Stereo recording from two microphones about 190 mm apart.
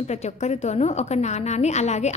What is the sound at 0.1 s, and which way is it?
A woman's voice, 35° left (ahead or behind).